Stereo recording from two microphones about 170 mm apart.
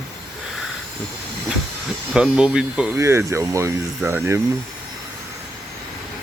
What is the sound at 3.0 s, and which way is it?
Speech, 15° right (ahead or behind).